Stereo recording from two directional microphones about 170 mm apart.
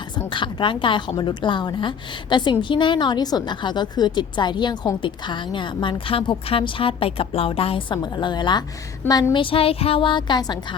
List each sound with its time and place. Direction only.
0.3 s a woman's voice: 30° left (ahead or behind)